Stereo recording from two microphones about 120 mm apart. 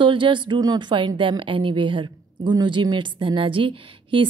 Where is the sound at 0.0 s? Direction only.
45° right (ahead or behind).